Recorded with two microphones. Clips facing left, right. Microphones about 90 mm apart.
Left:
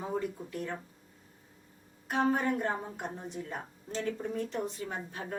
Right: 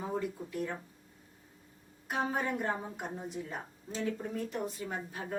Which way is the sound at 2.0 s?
5° right (ahead or behind).